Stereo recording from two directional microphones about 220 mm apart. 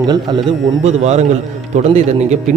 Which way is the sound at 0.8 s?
30° right (ahead or behind).